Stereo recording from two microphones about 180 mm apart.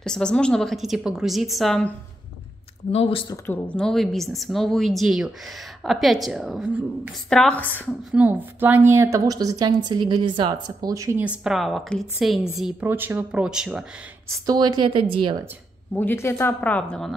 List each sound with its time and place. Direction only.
0.0 s a woman's voice: 5° left (ahead or behind)
2.9 s speech: 30° left (ahead or behind)
3.4 s a woman's voice: 10° left (ahead or behind)
8.1 s a woman's voice: 10° right (ahead or behind)
12.8 s a woman's voice: 10° right (ahead or behind)
14.4 s speech: 20° right (ahead or behind)
15.9 s a woman's voice: 10° left (ahead or behind)